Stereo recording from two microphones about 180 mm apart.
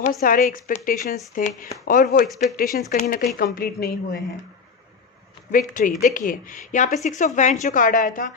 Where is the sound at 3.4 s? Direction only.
55° left (ahead or behind).